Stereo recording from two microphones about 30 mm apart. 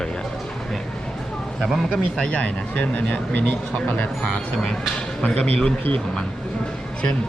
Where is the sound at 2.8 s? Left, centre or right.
Left.